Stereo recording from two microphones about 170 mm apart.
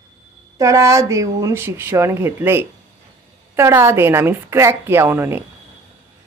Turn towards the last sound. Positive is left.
turn(degrees=-15)  # may be behind; listen again after turning